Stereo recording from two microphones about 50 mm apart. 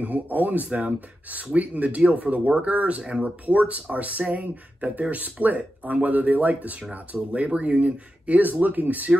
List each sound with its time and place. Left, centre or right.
0.0 s speech: right